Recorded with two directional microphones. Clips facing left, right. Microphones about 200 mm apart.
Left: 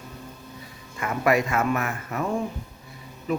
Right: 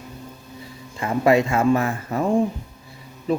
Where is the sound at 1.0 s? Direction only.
25° right (ahead or behind).